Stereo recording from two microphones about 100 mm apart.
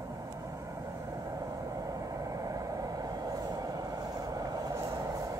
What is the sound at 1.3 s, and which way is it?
Vehicle, 35° right (ahead or behind).